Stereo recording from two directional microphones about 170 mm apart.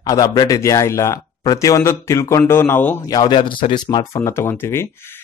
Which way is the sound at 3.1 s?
25° left (ahead or behind).